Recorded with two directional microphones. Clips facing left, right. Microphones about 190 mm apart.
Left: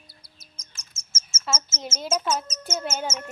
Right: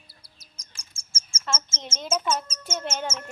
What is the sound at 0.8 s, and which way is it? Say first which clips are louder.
Bird: even; 30° right (ahead or behind).